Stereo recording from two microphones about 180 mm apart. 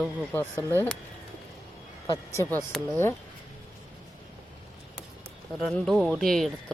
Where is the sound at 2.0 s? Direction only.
20° left (ahead or behind).